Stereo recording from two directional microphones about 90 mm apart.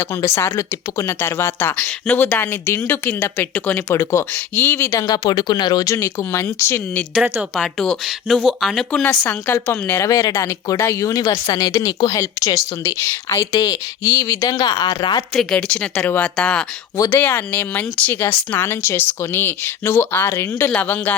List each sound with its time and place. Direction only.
0.0 s speech: 30° left (ahead or behind)
7.8 s speech: 5° left (ahead or behind)
8.7 s speech: 5° left (ahead or behind)
10.0 s speech: 40° left (ahead or behind)
15.4 s speech: 5° left (ahead or behind)